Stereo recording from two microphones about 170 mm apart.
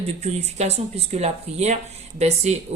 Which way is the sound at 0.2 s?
40° right (ahead or behind).